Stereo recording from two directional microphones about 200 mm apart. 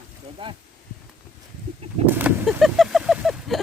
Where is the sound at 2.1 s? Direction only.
10° right (ahead or behind).